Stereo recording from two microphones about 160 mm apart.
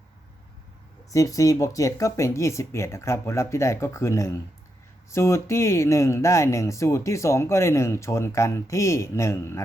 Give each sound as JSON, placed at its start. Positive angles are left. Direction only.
{"t": 1.1, "sound": "speech", "side_deg": 20}